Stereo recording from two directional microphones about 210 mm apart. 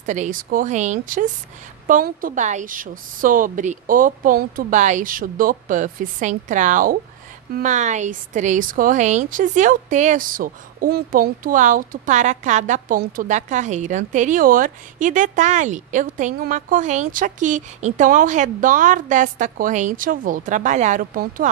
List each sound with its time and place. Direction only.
0.0 s a woman's voice: 35° right (ahead or behind)